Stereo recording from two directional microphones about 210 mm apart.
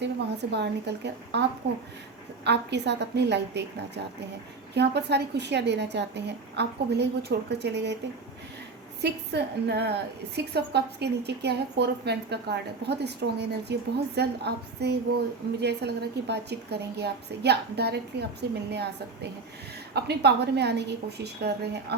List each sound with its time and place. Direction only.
0.0 s a woman's voice: 55° right (ahead or behind)
9.0 s a woman's voice: 55° right (ahead or behind)